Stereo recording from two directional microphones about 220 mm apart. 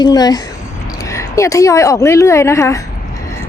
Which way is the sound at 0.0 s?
20° left (ahead or behind).